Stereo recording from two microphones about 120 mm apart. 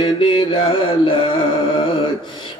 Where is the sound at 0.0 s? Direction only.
45° left (ahead or behind).